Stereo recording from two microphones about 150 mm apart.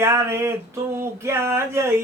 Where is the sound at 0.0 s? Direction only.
15° right (ahead or behind).